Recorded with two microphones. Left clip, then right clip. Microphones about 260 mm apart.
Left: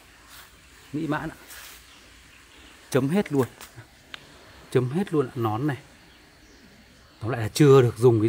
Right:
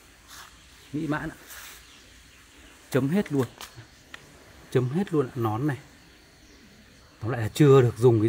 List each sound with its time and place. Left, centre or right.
1.0 s speech: centre
2.9 s speech: centre
4.8 s speech: centre
7.2 s speech: centre